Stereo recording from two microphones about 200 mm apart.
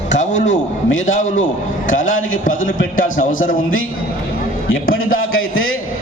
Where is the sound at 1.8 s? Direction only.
75° left (ahead or behind).